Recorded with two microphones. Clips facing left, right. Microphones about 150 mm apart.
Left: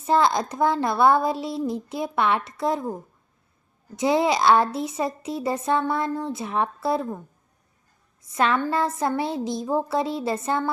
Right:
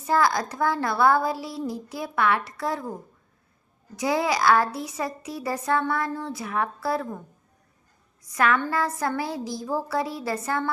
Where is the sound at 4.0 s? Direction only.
25° left (ahead or behind).